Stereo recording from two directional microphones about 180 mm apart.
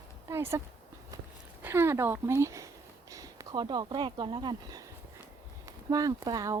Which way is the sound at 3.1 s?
20° right (ahead or behind).